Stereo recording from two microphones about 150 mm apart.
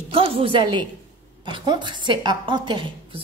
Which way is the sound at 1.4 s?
30° right (ahead or behind).